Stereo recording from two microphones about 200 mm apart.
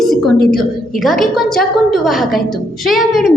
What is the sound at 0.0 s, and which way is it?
A woman's voice, centre (ahead or behind).